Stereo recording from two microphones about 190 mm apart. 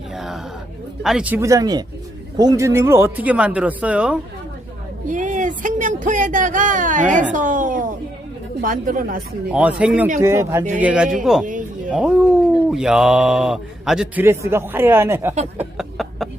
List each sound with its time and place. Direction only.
1.0 s speech: 5° right (ahead or behind)
5.0 s speech: 40° right (ahead or behind)
9.5 s a man's voice: 5° right (ahead or behind)
15.8 s a sound: centre (ahead or behind)